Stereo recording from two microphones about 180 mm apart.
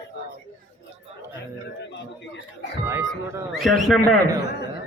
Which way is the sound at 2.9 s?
15° right (ahead or behind).